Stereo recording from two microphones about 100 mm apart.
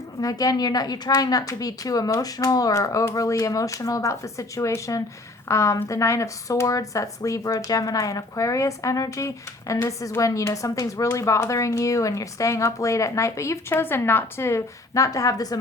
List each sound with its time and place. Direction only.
0.2 s speech: 40° left (ahead or behind)